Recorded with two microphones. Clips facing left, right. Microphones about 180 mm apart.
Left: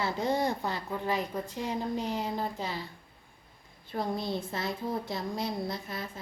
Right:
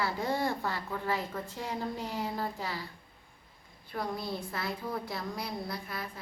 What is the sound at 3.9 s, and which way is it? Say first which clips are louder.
A woman's voice: left 3 dB; 25° left (ahead or behind).